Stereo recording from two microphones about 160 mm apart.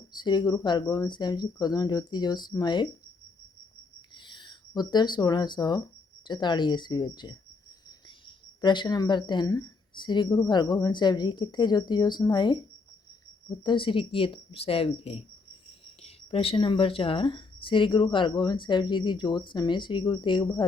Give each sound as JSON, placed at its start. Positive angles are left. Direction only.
{"t": 0.1, "sound": "speech", "side_deg": 25}
{"t": 4.1, "sound": "speech", "side_deg": 30}
{"t": 8.6, "sound": "speech", "side_deg": 30}
{"t": 13.7, "sound": "speech", "side_deg": 30}